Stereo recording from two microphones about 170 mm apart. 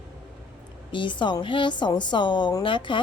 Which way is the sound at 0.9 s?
30° left (ahead or behind).